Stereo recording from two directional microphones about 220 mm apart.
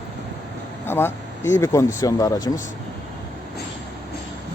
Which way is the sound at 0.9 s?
10° left (ahead or behind).